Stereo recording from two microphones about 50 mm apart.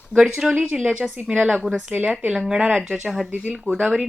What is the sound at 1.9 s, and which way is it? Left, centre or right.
Speech, right.